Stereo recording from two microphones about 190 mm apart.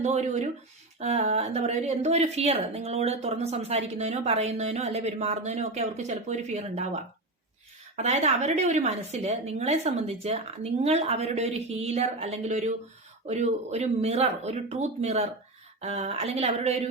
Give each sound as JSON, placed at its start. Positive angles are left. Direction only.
{"t": 0.0, "sound": "a woman's voice", "side_deg": -35}